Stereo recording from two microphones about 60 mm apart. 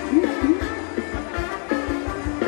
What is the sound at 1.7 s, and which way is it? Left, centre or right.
Music, centre.